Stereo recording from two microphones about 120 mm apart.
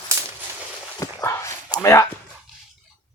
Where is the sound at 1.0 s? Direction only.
25° left (ahead or behind).